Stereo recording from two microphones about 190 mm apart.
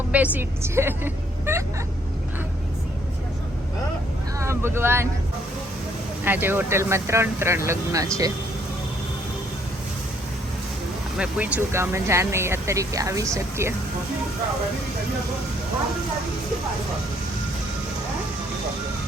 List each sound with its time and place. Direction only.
0.1 s speech: 10° right (ahead or behind)
4.4 s speech: 15° right (ahead or behind)
6.2 s speech: 10° right (ahead or behind)
11.2 s speech: 5° right (ahead or behind)